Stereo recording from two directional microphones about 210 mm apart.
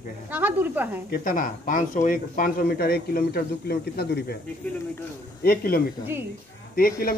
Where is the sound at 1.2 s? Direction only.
40° left (ahead or behind).